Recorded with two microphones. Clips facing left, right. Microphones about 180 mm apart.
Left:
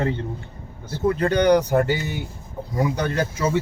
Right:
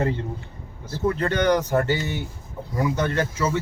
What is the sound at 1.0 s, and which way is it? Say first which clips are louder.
Speech: left 3 dB; 15° left (ahead or behind).